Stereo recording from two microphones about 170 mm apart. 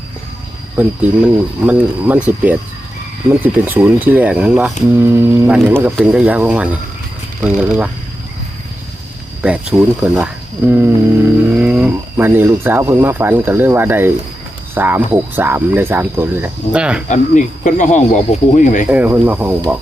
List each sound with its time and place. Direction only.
0.8 s speech: 10° right (ahead or behind)
9.4 s speech: 5° right (ahead or behind)
17.1 s speech: 45° left (ahead or behind)
18.9 s speech: 10° right (ahead or behind)